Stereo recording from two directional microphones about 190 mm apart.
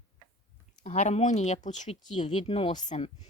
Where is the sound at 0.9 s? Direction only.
35° left (ahead or behind).